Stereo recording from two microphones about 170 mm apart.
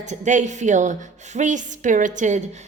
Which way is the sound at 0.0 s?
45° right (ahead or behind).